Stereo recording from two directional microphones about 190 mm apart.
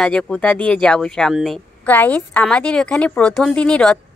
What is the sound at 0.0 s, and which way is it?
Speech, 5° left (ahead or behind).